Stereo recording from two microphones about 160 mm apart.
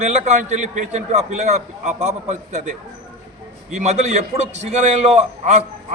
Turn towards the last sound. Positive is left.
turn(degrees=-45)  # may be behind; listen again after turning